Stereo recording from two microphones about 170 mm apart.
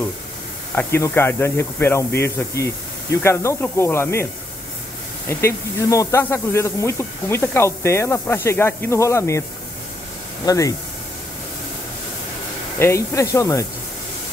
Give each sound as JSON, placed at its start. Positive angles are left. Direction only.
{"t": 0.7, "sound": "speech", "side_deg": 15}
{"t": 5.3, "sound": "speech", "side_deg": 15}
{"t": 10.4, "sound": "speech", "side_deg": 20}
{"t": 12.7, "sound": "speech", "side_deg": 15}